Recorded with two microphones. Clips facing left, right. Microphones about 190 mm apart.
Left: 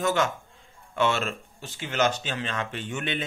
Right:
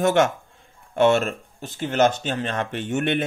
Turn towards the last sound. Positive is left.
turn(degrees=-55)  # may be behind; listen again after turning